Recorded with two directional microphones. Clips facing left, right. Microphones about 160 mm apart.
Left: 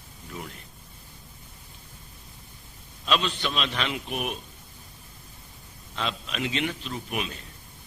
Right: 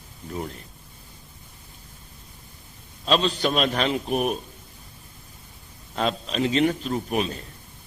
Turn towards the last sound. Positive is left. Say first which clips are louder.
# right 7 dB
turn(degrees=-35)  # may be behind; listen again after turning